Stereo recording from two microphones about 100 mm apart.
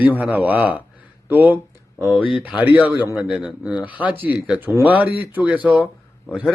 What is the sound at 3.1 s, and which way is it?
Speech, 5° right (ahead or behind).